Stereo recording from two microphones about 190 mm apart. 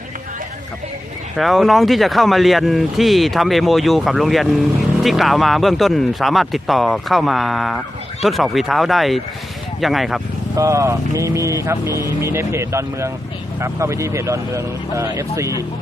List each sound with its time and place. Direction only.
1.4 s speech: centre (ahead or behind)
10.5 s speech: 15° right (ahead or behind)